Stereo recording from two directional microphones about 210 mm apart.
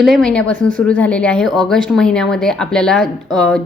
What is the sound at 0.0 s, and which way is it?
Speech, centre (ahead or behind).